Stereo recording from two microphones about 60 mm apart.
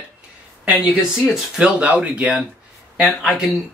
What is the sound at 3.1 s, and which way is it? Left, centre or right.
Speech, centre.